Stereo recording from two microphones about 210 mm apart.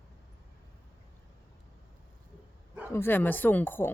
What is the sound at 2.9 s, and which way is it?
Speech, 10° left (ahead or behind).